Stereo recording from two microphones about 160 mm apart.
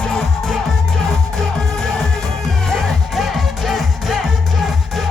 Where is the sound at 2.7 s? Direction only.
Centre (ahead or behind).